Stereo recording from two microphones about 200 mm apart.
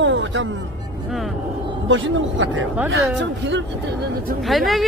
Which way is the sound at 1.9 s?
70° right (ahead or behind).